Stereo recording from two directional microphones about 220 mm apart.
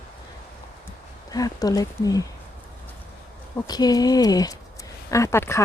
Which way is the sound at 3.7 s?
15° left (ahead or behind).